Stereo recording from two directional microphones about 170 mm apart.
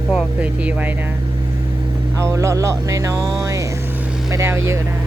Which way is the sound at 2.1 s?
15° right (ahead or behind).